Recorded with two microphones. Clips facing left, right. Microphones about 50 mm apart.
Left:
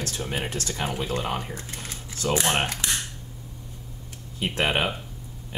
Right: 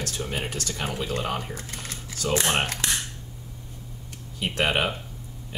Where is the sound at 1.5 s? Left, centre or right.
Left.